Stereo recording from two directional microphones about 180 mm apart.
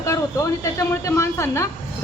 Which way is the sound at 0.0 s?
15° left (ahead or behind).